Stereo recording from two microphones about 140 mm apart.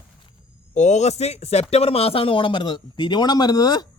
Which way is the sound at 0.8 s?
55° left (ahead or behind).